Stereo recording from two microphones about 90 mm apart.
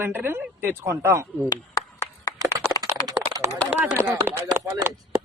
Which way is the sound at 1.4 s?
35° left (ahead or behind).